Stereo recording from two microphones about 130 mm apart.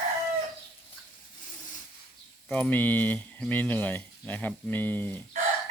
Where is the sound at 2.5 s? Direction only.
10° left (ahead or behind).